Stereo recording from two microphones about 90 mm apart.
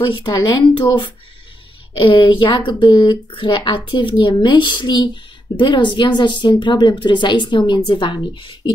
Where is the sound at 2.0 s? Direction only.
70° left (ahead or behind).